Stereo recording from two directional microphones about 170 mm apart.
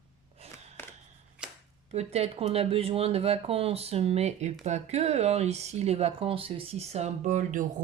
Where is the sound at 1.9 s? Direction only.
35° right (ahead or behind).